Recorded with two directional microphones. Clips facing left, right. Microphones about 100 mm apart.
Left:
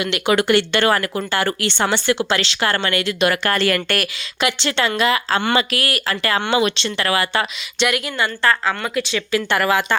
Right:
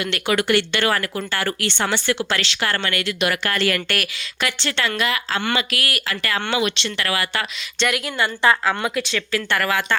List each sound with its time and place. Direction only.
0.0 s speech: 20° left (ahead or behind)
7.8 s a woman's voice: centre (ahead or behind)
8.3 s a woman's voice: 15° right (ahead or behind)
8.8 s a woman's voice: centre (ahead or behind)
9.3 s speech: 20° left (ahead or behind)